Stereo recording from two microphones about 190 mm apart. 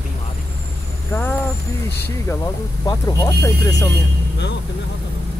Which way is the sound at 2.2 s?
15° left (ahead or behind).